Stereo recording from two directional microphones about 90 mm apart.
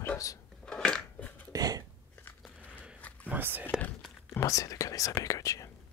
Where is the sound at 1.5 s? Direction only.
45° right (ahead or behind).